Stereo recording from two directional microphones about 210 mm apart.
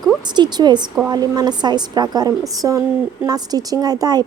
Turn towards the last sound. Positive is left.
turn(degrees=-20)  # may be behind; listen again after turning